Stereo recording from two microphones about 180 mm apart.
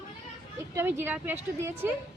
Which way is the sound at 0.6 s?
15° right (ahead or behind).